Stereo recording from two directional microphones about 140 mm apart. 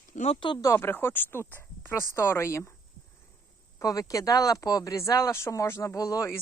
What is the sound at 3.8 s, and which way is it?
Speech, 25° left (ahead or behind).